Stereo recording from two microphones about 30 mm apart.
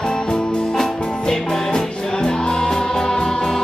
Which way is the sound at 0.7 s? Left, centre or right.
Centre.